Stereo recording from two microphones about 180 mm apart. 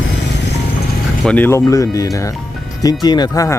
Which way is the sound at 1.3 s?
10° left (ahead or behind).